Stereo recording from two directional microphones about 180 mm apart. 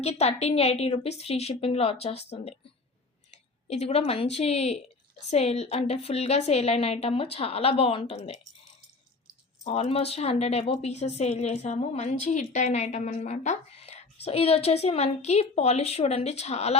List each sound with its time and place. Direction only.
0.0 s a woman's voice: 35° left (ahead or behind)
3.7 s a woman's voice: 35° left (ahead or behind)
9.6 s a woman's voice: 35° left (ahead or behind)